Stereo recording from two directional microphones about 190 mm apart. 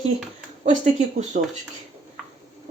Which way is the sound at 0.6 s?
40° right (ahead or behind).